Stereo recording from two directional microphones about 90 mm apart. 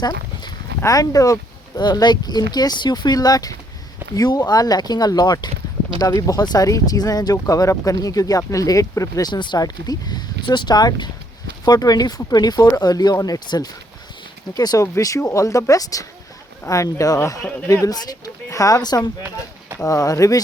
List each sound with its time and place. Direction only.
0.9 s speech: 40° left (ahead or behind)
6.0 s speech: 40° left (ahead or behind)
9.3 s speech: 55° left (ahead or behind); by 20.4 s 40° left (ahead or behind)